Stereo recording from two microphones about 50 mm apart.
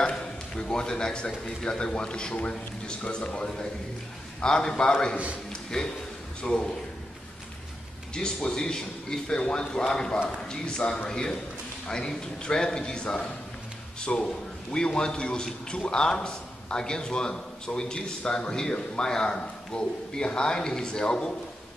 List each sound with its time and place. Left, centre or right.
0.1 s a man's voice: centre
5.5 s a sound: centre
6.4 s a man's voice: centre
8.1 s a man's voice: centre